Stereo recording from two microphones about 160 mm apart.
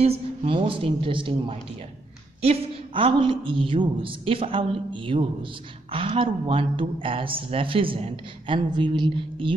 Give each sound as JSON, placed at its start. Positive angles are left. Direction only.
{"t": 0.0, "sound": "a woman's voice", "side_deg": -40}